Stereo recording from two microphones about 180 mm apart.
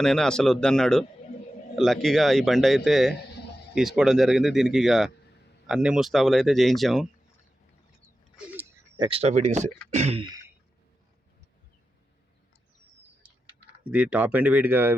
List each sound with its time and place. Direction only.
0.0 s a man's voice: 5° left (ahead or behind)
8.4 s speech: 5° right (ahead or behind)
9.0 s speech: 30° right (ahead or behind)
10.2 s throat clearing: 20° right (ahead or behind)
13.9 s speech: 10° right (ahead or behind)